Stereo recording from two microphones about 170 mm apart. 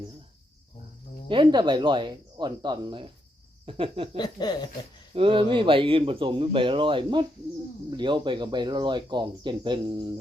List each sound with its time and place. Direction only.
1.3 s speech: 30° right (ahead or behind)
4.2 s chuckle: 25° left (ahead or behind)
5.1 s speech: 30° right (ahead or behind)